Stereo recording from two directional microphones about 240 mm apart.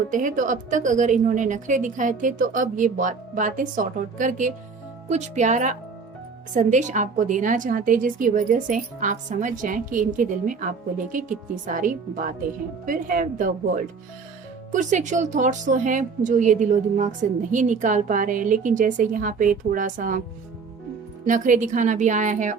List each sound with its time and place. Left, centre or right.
0.1 s a woman's voice: right
21.2 s a woman's voice: right